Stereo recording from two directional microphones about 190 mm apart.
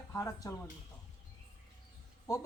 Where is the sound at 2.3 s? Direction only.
20° left (ahead or behind).